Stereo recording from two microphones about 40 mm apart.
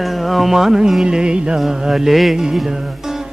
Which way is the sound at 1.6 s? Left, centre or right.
Centre.